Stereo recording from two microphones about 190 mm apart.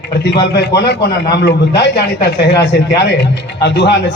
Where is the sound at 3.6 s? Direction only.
60° left (ahead or behind).